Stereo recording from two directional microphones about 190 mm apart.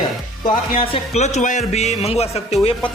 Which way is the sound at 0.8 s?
30° left (ahead or behind).